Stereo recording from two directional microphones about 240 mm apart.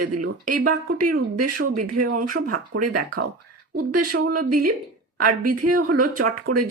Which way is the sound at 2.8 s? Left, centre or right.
Right.